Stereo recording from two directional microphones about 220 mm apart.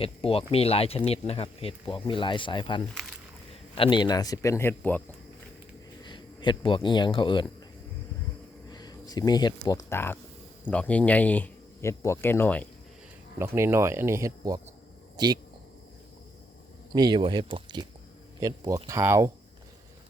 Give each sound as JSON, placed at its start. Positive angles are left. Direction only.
{"t": 0.0, "sound": "speech", "side_deg": 25}
{"t": 6.0, "sound": "speech", "side_deg": 20}
{"t": 8.7, "sound": "speech", "side_deg": 20}
{"t": 13.4, "sound": "speech", "side_deg": -10}
{"t": 16.9, "sound": "speech", "side_deg": -20}